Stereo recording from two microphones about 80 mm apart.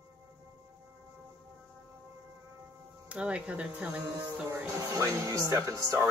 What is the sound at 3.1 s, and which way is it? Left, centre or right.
Speech, centre.